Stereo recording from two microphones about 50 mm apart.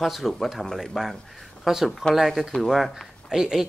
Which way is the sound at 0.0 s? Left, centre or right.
Centre.